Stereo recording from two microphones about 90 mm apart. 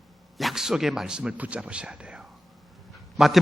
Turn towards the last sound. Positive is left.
turn(degrees=0)  # may be behind; listen again after turning